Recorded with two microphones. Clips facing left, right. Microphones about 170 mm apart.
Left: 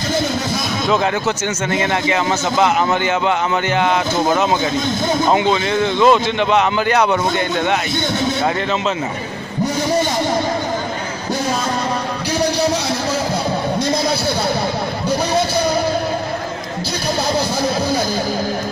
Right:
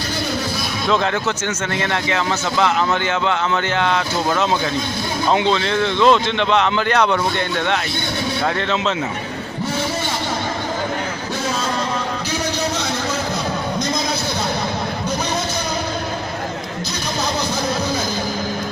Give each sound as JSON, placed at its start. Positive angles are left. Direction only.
{"t": 1.7, "sound": "speech", "side_deg": 20}